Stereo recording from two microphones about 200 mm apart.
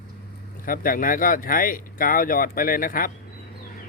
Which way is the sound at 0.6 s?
45° left (ahead or behind).